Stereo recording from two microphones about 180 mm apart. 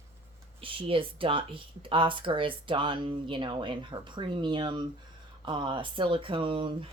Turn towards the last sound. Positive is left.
turn(degrees=-30)  # may be behind; listen again after turning